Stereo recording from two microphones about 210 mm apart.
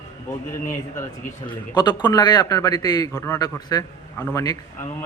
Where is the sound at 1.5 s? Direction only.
20° left (ahead or behind).